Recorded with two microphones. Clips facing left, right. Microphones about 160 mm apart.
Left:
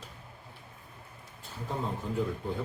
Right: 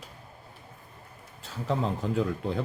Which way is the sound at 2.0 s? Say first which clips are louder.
Right 6 dB; 90° right.